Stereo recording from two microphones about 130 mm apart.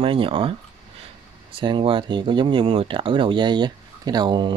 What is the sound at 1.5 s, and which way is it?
Speech, 40° right (ahead or behind).